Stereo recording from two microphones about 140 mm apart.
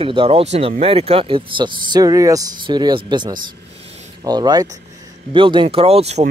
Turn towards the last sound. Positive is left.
turn(degrees=-50)  # may be behind; listen again after turning